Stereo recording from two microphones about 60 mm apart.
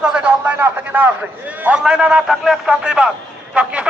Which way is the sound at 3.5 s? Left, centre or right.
Centre.